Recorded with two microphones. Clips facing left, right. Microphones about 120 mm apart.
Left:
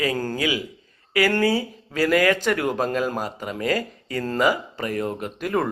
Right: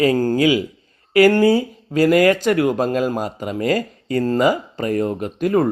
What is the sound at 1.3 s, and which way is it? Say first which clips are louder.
Speech: right 6 dB; 15° right (ahead or behind).